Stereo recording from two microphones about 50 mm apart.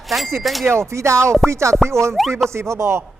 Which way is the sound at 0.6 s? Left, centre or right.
Right.